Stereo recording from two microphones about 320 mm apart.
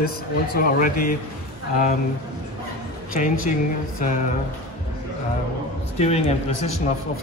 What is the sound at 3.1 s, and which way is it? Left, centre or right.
Speech, left.